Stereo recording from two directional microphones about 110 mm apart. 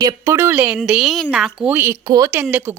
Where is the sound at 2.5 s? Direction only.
20° right (ahead or behind).